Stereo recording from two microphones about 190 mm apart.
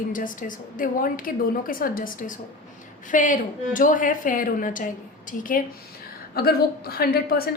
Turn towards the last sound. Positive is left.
turn(degrees=55)  # may be behind; listen again after turning